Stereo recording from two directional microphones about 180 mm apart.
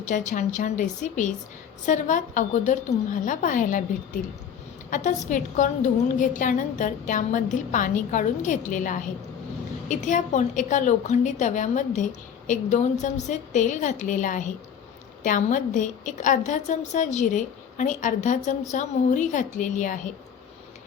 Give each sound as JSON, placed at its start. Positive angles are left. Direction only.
{"t": 0.0, "sound": "a woman's voice", "side_deg": 45}